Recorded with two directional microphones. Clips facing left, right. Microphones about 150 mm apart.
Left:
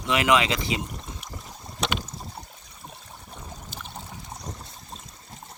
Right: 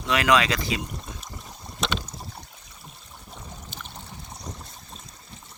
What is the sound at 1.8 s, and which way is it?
Boat, 10° left (ahead or behind).